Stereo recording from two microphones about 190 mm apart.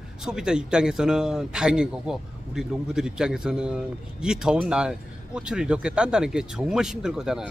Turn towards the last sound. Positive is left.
turn(degrees=-5)  # may be behind; listen again after turning